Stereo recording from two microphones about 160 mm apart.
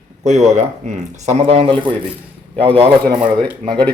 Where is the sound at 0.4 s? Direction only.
45° right (ahead or behind).